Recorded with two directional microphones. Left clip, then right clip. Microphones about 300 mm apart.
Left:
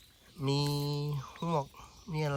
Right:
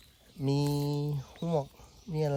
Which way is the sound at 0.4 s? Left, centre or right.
Centre.